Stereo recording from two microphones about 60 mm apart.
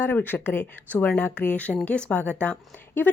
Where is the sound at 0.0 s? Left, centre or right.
Left.